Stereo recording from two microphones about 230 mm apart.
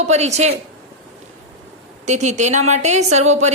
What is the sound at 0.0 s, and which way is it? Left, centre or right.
Speech, right.